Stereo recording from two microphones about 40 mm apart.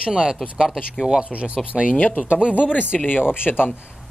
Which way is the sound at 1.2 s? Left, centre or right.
Right.